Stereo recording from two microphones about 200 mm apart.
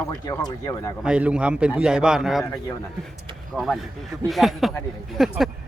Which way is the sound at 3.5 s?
Centre (ahead or behind).